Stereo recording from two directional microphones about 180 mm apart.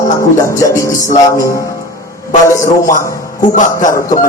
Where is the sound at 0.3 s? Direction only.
15° left (ahead or behind).